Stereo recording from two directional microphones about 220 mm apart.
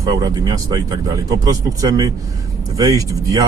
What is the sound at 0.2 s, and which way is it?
Speech, 15° right (ahead or behind).